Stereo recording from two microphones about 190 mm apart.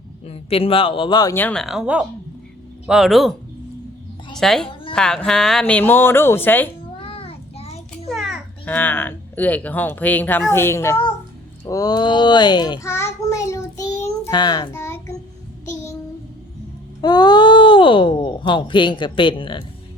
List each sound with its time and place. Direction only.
0.3 s speech: 30° left (ahead or behind); by 3.3 s centre (ahead or behind)
4.4 s a woman's voice: centre (ahead or behind)
7.0 s child singing: 30° left (ahead or behind)
8.1 s a child's voice: centre (ahead or behind)
11.6 s child singing: 20° left (ahead or behind)
17.0 s speech: 20° left (ahead or behind)